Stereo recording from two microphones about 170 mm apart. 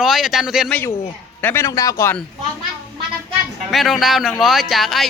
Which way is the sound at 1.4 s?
15° left (ahead or behind).